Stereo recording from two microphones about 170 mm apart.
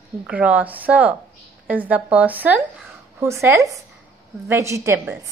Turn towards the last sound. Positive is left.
turn(degrees=-15)  # may be behind; listen again after turning